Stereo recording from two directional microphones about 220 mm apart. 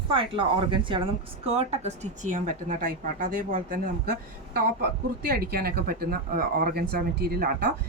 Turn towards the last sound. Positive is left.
turn(degrees=-45)  # may be behind; listen again after turning